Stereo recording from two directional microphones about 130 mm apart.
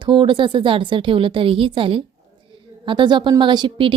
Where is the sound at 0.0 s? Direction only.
40° right (ahead or behind).